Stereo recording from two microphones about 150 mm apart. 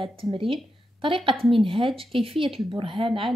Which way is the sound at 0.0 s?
35° right (ahead or behind).